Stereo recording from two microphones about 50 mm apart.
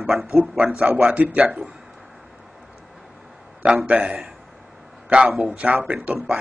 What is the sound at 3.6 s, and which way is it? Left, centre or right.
Speech, right.